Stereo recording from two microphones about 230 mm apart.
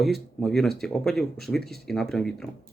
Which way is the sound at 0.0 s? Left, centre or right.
Centre.